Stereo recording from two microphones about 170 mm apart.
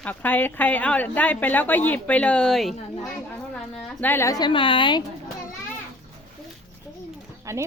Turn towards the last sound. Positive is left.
turn(degrees=-15)  # may be behind; listen again after turning